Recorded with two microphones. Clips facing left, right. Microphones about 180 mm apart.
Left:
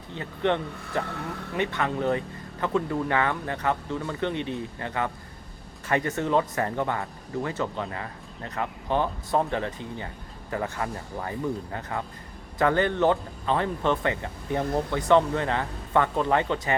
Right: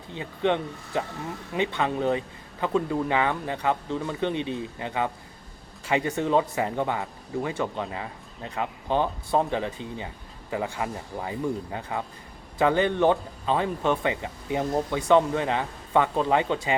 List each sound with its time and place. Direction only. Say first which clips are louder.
0.1 s speech: right 1 dB; 15° right (ahead or behind)